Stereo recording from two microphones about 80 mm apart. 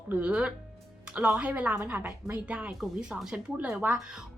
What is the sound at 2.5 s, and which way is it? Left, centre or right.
A woman's voice, centre.